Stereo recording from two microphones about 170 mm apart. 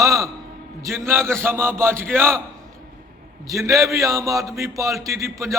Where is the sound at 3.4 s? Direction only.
20° right (ahead or behind).